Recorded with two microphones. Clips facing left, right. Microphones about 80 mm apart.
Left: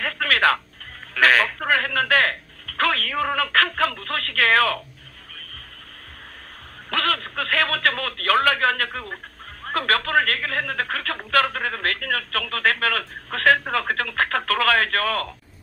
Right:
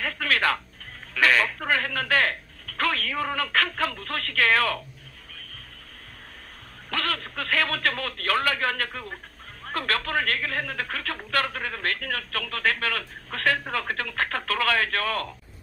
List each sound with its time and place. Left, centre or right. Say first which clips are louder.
0.0 s a sound: left 4 dB; left
1.1 s speech: left 4 dB; left
6.9 s a man's voice: left 5 dB; left